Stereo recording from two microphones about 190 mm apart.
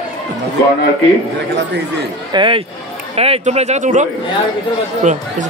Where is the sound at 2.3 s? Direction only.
25° right (ahead or behind).